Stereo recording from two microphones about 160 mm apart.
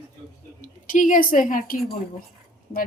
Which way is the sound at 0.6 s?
55° left (ahead or behind).